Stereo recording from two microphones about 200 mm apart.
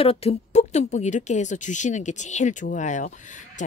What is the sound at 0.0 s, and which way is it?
Speech, 30° left (ahead or behind).